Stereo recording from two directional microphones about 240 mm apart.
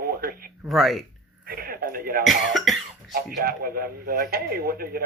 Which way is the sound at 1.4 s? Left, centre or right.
Right.